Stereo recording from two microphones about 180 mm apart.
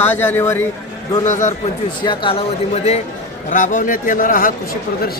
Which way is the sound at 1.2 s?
45° left (ahead or behind).